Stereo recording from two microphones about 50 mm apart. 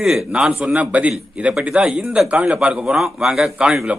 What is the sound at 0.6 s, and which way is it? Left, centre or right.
A man's voice, right.